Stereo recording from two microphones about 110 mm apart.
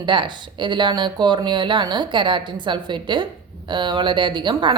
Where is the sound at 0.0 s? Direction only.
45° right (ahead or behind).